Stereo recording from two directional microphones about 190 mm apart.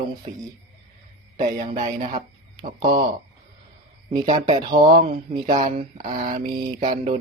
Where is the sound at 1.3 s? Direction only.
35° right (ahead or behind).